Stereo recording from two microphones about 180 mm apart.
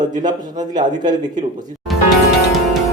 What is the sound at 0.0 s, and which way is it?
Speech, 25° right (ahead or behind).